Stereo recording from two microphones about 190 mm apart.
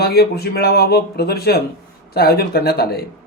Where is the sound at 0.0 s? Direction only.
55° left (ahead or behind).